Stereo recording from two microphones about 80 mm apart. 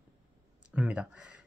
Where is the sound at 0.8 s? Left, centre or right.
Centre.